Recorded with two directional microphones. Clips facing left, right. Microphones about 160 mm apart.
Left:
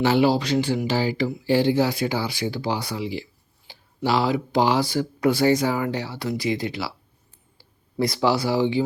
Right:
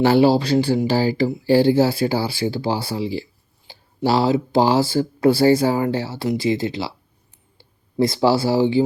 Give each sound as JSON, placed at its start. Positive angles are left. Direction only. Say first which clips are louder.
{"t": 0.0, "sound": "speech", "louder": "right 4 dB", "side_deg": -35}